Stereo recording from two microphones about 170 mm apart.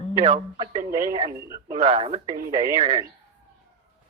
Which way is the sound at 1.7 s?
40° right (ahead or behind).